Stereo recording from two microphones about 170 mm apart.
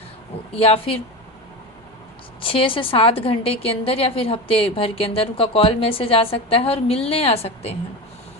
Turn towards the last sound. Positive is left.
turn(degrees=35)  # may be behind; listen again after turning